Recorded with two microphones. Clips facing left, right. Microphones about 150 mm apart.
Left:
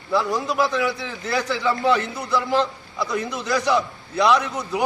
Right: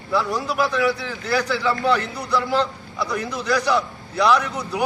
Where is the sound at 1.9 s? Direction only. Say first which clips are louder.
Even; 5° left (ahead or behind).